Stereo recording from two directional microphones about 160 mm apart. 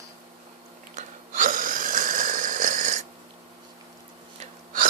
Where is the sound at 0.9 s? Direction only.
55° right (ahead or behind).